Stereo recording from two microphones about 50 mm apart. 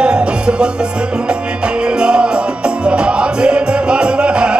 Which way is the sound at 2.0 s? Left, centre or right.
Centre.